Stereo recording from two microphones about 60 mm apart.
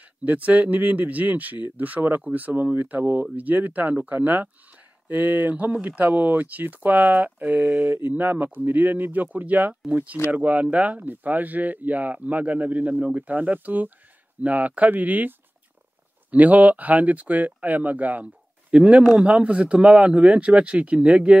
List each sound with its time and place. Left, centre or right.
0.2 s speech: right